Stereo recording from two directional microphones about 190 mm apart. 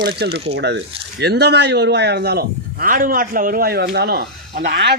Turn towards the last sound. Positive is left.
turn(degrees=-55)  # may be behind; listen again after turning